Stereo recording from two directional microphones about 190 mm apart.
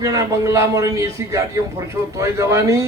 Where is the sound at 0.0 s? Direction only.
15° right (ahead or behind).